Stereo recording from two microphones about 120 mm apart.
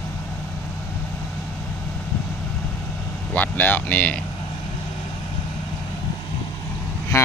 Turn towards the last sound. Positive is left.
turn(degrees=25)  # may be behind; listen again after turning